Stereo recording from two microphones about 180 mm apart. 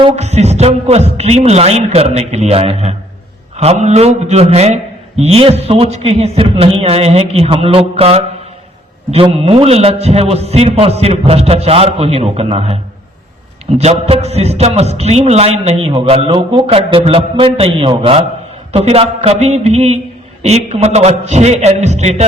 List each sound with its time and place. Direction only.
0.0 s a man's voice: 40° right (ahead or behind)